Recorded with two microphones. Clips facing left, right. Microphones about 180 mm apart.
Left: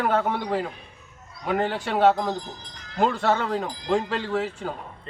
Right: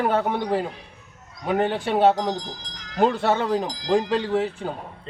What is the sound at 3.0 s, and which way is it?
A man's voice, 25° right (ahead or behind).